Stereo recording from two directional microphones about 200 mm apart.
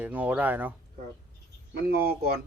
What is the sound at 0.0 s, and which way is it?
Speech, 10° right (ahead or behind).